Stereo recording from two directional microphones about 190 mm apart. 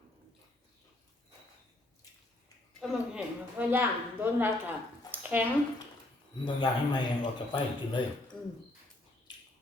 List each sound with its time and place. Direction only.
2.8 s a woman's voice: 5° right (ahead or behind)
5.1 s a sound: 10° right (ahead or behind)
6.4 s a man's voice: 25° left (ahead or behind)